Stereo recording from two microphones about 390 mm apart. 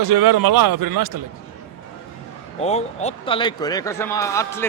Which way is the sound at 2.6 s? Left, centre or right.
Centre.